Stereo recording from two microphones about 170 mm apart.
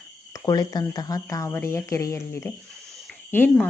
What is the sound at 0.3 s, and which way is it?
Speech, 20° left (ahead or behind).